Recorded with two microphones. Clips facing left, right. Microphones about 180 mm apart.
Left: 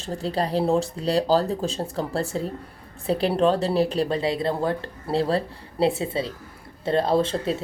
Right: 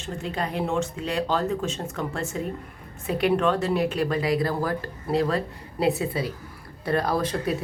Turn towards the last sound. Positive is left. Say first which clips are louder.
# left 3 dB
turn(degrees=25)  # may be behind; listen again after turning